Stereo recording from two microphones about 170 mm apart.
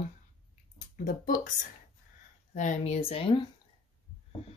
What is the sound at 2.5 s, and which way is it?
Speech, 45° left (ahead or behind).